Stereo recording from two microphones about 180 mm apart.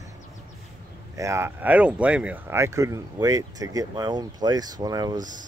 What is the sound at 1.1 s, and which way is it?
Speech, 15° right (ahead or behind).